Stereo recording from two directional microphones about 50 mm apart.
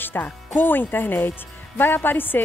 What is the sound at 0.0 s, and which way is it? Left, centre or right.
Music, left.